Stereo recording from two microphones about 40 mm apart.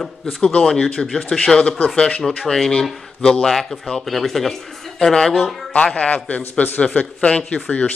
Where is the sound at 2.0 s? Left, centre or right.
Left.